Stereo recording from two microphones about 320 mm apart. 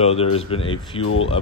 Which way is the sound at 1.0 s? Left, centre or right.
Left.